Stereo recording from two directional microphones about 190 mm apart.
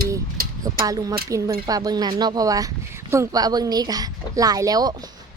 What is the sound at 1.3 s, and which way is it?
A child's voice, 15° right (ahead or behind).